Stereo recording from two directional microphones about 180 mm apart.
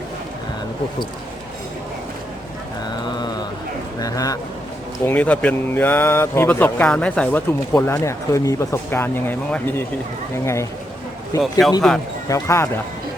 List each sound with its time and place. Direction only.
4.0 s speech: 20° left (ahead or behind)
5.0 s speech: 5° left (ahead or behind)
11.6 s speech: centre (ahead or behind)
12.3 s speech: 15° left (ahead or behind)